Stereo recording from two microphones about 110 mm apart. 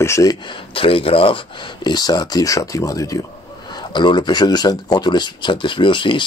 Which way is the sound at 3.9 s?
45° left (ahead or behind).